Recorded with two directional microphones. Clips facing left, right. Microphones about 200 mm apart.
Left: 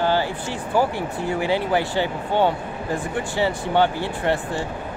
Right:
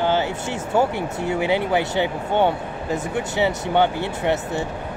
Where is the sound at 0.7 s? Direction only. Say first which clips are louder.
Right 1 dB; 20° right (ahead or behind).